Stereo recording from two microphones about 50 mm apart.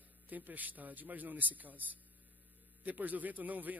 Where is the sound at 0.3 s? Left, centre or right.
Right.